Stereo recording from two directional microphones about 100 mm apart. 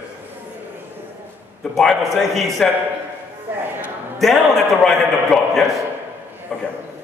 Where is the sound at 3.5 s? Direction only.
20° right (ahead or behind).